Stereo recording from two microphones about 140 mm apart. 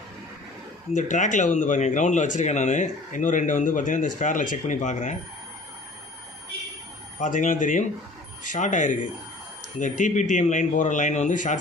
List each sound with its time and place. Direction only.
0.9 s speech: 60° left (ahead or behind)
7.2 s speech: 65° left (ahead or behind)